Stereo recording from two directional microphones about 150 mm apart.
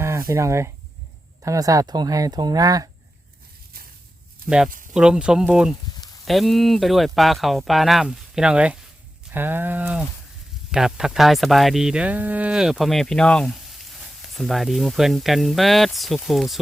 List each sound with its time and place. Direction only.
0.0 s speech: 20° right (ahead or behind)
4.4 s speech: 5° right (ahead or behind)
9.3 s a sound: 15° right (ahead or behind)
10.7 s speech: 5° right (ahead or behind)